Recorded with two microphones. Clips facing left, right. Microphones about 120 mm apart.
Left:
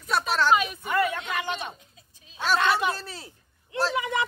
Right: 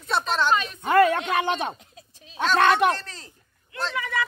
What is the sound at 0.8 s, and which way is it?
Speech, 65° right (ahead or behind).